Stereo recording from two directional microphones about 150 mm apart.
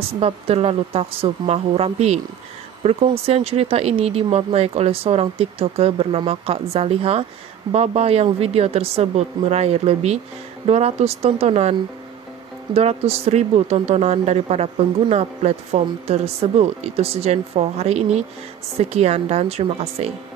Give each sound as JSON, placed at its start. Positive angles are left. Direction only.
{"t": 0.2, "sound": "speech", "side_deg": -40}
{"t": 12.7, "sound": "speech", "side_deg": -40}